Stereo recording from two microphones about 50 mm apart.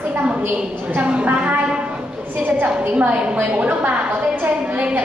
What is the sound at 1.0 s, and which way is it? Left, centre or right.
Speech, right.